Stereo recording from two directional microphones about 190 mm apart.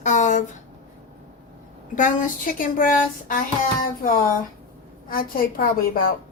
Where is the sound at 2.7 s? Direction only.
45° left (ahead or behind).